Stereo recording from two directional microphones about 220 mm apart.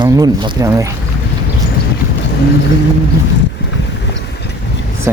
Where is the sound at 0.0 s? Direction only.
15° right (ahead or behind).